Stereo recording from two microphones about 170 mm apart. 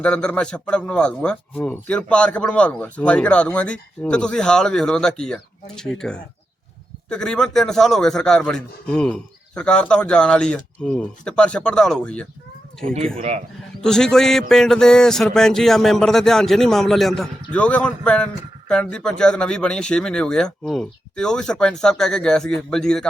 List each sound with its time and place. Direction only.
0.0 s speech: 5° left (ahead or behind)
13.1 s speech: 40° right (ahead or behind)
13.8 s speech: 5° left (ahead or behind)